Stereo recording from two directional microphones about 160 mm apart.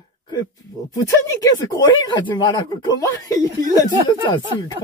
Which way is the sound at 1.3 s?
25° left (ahead or behind).